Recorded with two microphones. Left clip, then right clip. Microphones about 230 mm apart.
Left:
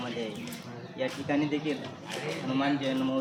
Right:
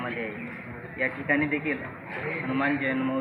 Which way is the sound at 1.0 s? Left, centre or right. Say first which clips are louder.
Right 4 dB; left.